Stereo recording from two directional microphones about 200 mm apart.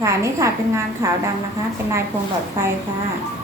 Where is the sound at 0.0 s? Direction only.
15° right (ahead or behind).